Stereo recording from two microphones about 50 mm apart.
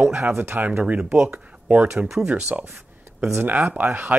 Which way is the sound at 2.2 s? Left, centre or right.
Right.